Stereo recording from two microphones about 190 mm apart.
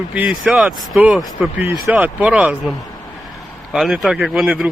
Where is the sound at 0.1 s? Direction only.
5° right (ahead or behind).